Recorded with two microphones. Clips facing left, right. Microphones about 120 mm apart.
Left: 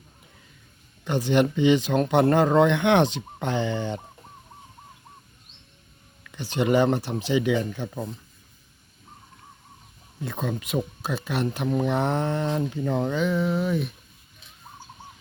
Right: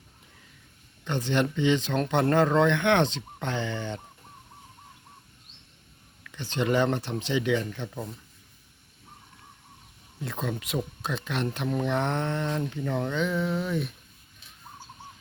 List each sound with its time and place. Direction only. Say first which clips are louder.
1.0 s speech: left 5 dB; 10° left (ahead or behind)
6.2 s speech: left 3 dB; 10° left (ahead or behind)
10.2 s speech: left 3 dB; centre (ahead or behind)
13.2 s speech: left 4 dB; centre (ahead or behind)